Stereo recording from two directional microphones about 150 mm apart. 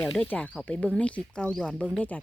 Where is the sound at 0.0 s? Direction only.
5° left (ahead or behind).